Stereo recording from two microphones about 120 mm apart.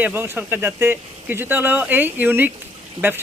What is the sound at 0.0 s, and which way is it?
Speech, 15° right (ahead or behind).